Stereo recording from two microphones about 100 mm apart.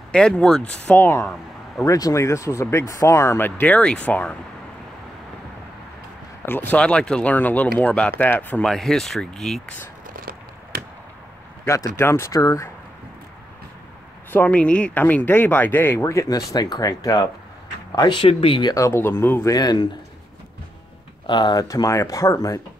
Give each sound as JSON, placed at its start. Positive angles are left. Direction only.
{"t": 0.1, "sound": "speech", "side_deg": 10}
{"t": 1.8, "sound": "speech", "side_deg": 35}
{"t": 6.4, "sound": "speech", "side_deg": 20}
{"t": 11.6, "sound": "speech", "side_deg": 30}
{"t": 14.3, "sound": "speech", "side_deg": 15}
{"t": 16.0, "sound": "speech", "side_deg": 30}
{"t": 17.9, "sound": "speech", "side_deg": 55}
{"t": 18.7, "sound": "speech", "side_deg": 30}
{"t": 19.5, "sound": "speech", "side_deg": 45}
{"t": 21.3, "sound": "speech", "side_deg": 50}
{"t": 21.6, "sound": "speech", "side_deg": 35}